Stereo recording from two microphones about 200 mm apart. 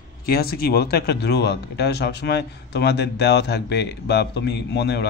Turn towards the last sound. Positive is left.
turn(degrees=55)  # may be behind; listen again after turning